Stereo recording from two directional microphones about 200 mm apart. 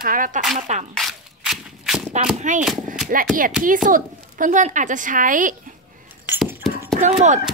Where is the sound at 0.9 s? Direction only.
Centre (ahead or behind).